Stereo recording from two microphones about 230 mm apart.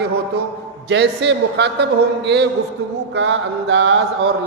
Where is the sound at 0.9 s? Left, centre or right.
Right.